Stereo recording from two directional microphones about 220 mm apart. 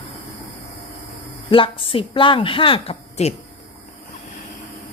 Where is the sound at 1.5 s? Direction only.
25° left (ahead or behind).